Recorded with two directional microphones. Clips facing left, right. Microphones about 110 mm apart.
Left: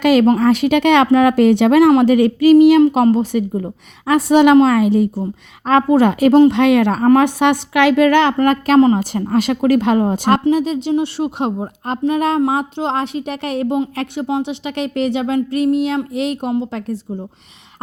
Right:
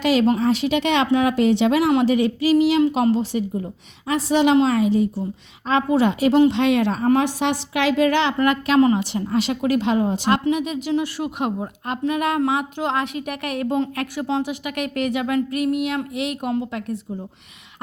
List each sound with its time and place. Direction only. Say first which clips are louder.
0.0 s speech: left 6 dB; 55° left (ahead or behind)
8.4 s speech: left 5 dB; 40° left (ahead or behind)
9.1 s speech: left 5 dB; 50° left (ahead or behind)
10.5 s speech: left 6 dB; 30° left (ahead or behind)